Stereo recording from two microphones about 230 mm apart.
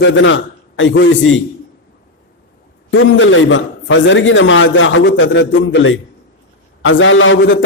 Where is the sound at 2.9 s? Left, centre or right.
Left.